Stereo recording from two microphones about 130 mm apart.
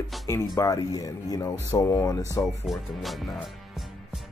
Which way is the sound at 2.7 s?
Centre (ahead or behind).